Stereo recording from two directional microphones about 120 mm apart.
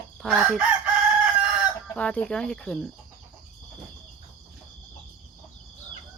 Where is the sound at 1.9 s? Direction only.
10° left (ahead or behind).